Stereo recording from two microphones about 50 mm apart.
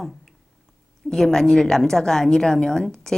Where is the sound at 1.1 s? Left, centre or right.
Centre.